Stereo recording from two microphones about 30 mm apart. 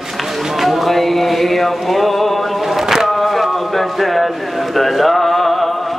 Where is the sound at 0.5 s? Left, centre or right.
Centre.